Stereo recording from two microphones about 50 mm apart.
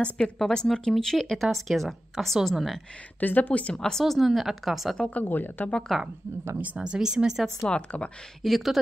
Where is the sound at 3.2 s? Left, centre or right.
Left.